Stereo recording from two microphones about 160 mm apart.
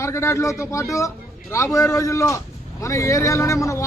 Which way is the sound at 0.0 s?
15° left (ahead or behind).